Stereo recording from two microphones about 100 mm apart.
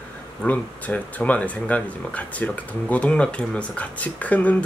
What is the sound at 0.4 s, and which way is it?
Speech, 15° left (ahead or behind).